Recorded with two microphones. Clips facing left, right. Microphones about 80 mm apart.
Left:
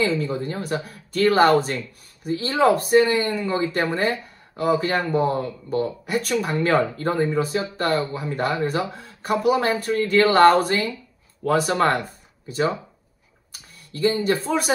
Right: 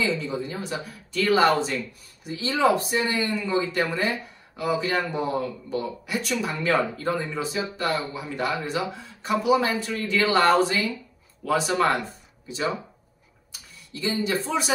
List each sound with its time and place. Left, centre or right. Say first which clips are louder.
0.0 s speech: left 4 dB; left